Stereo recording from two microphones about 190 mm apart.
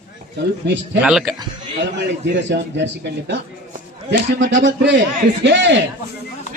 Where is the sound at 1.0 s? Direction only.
Centre (ahead or behind).